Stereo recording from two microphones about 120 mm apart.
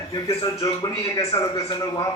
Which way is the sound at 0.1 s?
30° left (ahead or behind).